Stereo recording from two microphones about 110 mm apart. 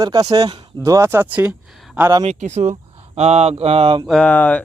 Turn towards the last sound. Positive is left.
turn(degrees=15)  # may be behind; listen again after turning